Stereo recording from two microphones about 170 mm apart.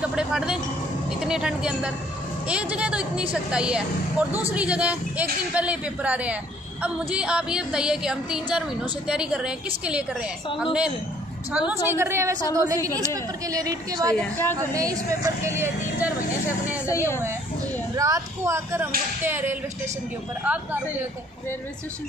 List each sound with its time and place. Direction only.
0.0 s a man's voice: 5° right (ahead or behind)
1.2 s a sound: 5° right (ahead or behind)
2.4 s a woman's voice: 5° right (ahead or behind)
3.5 s a sound: 5° right (ahead or behind)
4.6 s a woman's voice: 5° right (ahead or behind)
6.8 s a sound: 5° right (ahead or behind)
11.5 s a woman's voice: 10° right (ahead or behind)
14.1 s speech: 10° left (ahead or behind)
14.7 s a woman's voice: 20° right (ahead or behind)
16.8 s speech: 15° left (ahead or behind)
17.9 s a woman's voice: 20° right (ahead or behind)